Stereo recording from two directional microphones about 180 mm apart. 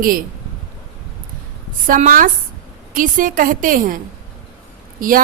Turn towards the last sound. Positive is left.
turn(degrees=-50)  # may be behind; listen again after turning